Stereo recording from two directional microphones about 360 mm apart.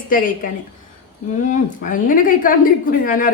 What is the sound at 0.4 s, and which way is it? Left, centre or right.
Speech, left.